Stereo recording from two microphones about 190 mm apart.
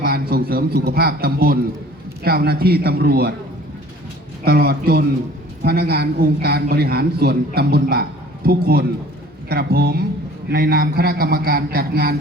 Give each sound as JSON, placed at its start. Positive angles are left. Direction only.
{"t": 0.0, "sound": "a man's voice", "side_deg": -55}
{"t": 4.4, "sound": "a man's voice", "side_deg": -55}